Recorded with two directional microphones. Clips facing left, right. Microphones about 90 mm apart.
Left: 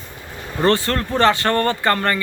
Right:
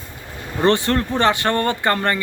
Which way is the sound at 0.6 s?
20° right (ahead or behind).